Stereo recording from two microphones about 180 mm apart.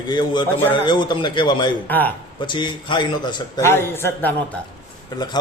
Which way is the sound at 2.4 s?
25° left (ahead or behind).